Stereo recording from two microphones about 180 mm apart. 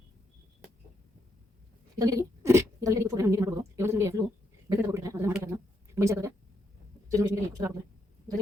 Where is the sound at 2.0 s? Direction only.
20° right (ahead or behind).